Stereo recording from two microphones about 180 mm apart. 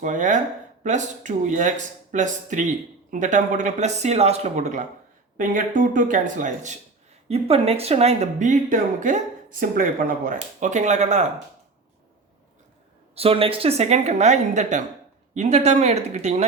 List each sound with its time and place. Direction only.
0.0 s speech: 45° right (ahead or behind)
13.1 s speech: 30° right (ahead or behind)